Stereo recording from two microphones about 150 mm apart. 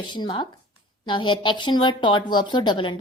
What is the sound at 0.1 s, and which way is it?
A woman's voice, 30° left (ahead or behind).